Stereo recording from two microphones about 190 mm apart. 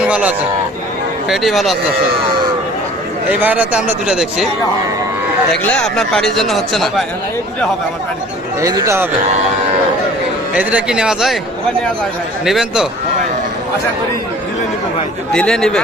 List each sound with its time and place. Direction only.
0.0 s a man's voice: 5° right (ahead or behind)
3.4 s a man's voice: 5° right (ahead or behind)
5.7 s speech: 5° left (ahead or behind)
8.6 s a man's voice: 15° right (ahead or behind)
10.5 s speech: 5° right (ahead or behind)
12.5 s speech: centre (ahead or behind)
15.3 s speech: 5° left (ahead or behind)